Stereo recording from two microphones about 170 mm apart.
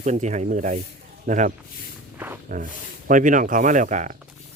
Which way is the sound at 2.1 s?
10° right (ahead or behind).